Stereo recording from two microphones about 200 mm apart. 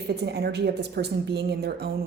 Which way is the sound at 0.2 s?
55° right (ahead or behind).